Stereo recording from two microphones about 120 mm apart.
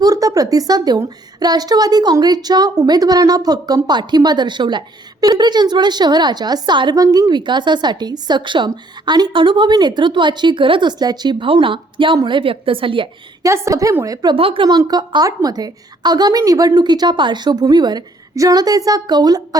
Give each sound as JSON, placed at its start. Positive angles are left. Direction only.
{"t": 0.0, "sound": "a woman's voice", "side_deg": -30}
{"t": 13.4, "sound": "a woman's voice", "side_deg": -25}
{"t": 14.3, "sound": "a woman's voice", "side_deg": -50}